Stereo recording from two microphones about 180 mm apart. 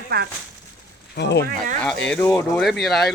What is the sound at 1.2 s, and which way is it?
Speech, 70° left (ahead or behind).